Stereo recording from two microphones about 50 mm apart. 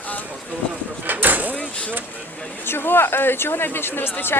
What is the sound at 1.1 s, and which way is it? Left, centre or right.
Speech, right.